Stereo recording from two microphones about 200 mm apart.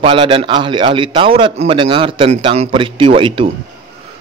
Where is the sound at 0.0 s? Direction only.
25° right (ahead or behind).